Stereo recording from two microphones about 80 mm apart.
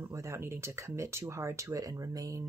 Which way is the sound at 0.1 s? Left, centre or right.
Right.